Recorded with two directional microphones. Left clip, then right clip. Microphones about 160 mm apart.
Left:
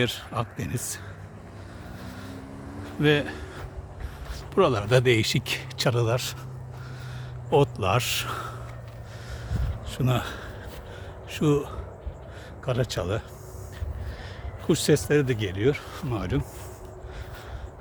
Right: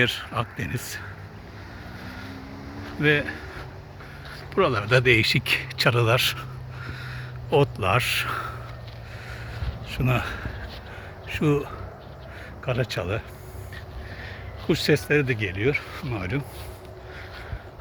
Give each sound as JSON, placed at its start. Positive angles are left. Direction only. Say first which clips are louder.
{"t": 0.0, "sound": "a man's voice", "louder": "right 4 dB", "side_deg": 10}
{"t": 3.0, "sound": "speech", "louder": "right 1 dB", "side_deg": 25}
{"t": 4.5, "sound": "a man's voice", "louder": "even", "side_deg": 25}
{"t": 7.5, "sound": "a man's voice", "louder": "right 1 dB", "side_deg": 10}
{"t": 10.0, "sound": "a man's voice", "louder": "right 2 dB", "side_deg": 5}
{"t": 14.7, "sound": "a man's voice", "louder": "right 1 dB", "side_deg": 15}
{"t": 15.4, "sound": "speech", "louder": "right 1 dB", "side_deg": 30}